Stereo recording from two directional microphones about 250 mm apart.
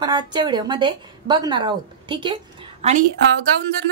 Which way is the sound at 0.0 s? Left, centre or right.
Centre.